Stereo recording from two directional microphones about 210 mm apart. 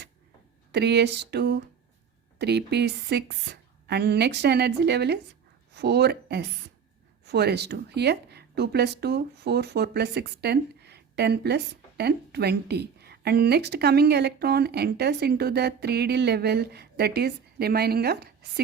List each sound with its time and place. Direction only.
0.7 s a woman's voice: 55° right (ahead or behind)